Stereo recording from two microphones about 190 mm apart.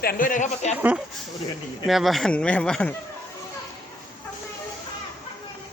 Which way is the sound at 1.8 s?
Centre (ahead or behind).